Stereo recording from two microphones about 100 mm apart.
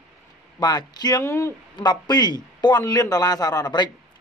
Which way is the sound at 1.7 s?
45° left (ahead or behind).